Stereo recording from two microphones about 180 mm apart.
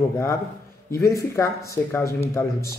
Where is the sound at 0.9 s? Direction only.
15° left (ahead or behind).